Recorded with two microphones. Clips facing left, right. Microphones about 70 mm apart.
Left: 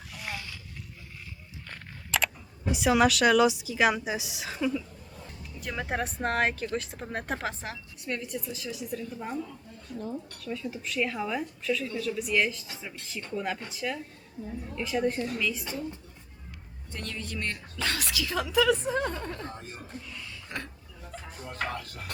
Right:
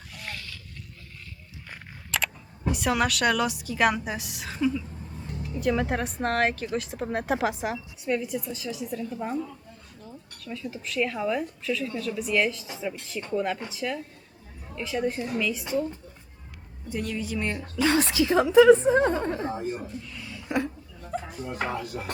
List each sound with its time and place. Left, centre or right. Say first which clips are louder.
0.1 s a sound: left 1 dB; centre
2.0 s speech: left 1 dB; centre
16.9 s speech: right 7 dB; centre; by 19.4 s right
19.5 s speech: right 11 dB; centre
20.2 s a sound: right 13 dB; centre
21.4 s speech: right 1 dB; centre